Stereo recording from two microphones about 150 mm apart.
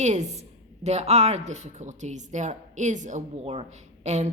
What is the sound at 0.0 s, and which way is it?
A woman's voice, 50° right (ahead or behind).